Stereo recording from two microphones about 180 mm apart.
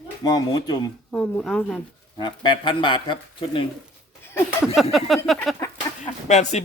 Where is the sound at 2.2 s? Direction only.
25° left (ahead or behind).